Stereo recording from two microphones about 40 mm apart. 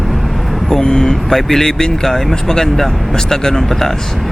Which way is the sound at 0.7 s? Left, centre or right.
Centre.